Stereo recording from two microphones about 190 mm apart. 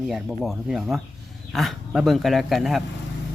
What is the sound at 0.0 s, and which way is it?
A man's voice, centre (ahead or behind).